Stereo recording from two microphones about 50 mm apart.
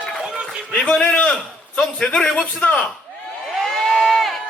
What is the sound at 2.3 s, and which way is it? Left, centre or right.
Speech, centre.